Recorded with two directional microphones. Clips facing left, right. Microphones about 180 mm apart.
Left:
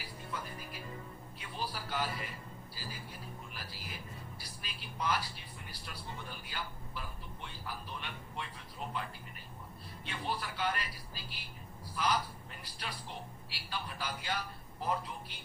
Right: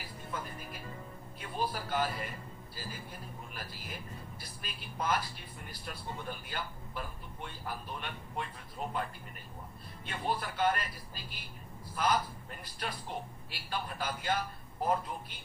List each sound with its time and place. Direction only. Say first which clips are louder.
1.4 s television: right 6 dB; 50° right (ahead or behind)
2.7 s a sound: right 3 dB; 50° right (ahead or behind)
4.4 s vehicle: right 2 dB; 50° right (ahead or behind)
5.8 s speech: right 5 dB; 50° right (ahead or behind)
10.1 s a man's voice: right 3 dB; 50° right (ahead or behind)